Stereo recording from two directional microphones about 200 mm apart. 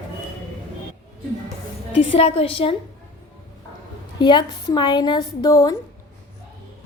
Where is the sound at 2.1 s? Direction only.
30° left (ahead or behind).